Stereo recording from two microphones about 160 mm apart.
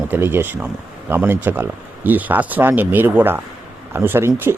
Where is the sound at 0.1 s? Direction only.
15° right (ahead or behind).